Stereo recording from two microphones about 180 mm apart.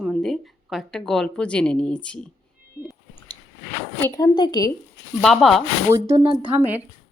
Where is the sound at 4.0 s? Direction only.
20° left (ahead or behind).